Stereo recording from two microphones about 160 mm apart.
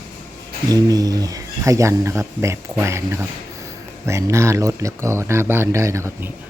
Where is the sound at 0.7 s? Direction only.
25° right (ahead or behind).